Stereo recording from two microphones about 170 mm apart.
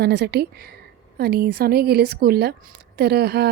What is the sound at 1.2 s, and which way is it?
A woman's voice, 70° right (ahead or behind).